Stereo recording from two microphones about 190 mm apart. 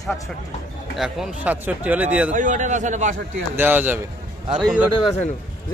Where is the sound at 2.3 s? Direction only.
40° right (ahead or behind).